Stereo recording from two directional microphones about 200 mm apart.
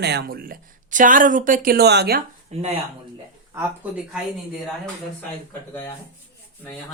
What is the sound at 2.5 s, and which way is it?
Speech, 35° right (ahead or behind).